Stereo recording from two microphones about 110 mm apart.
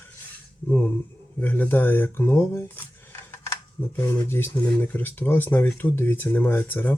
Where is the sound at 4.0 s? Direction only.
20° left (ahead or behind).